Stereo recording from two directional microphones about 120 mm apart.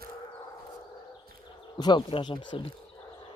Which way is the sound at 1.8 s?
40° left (ahead or behind).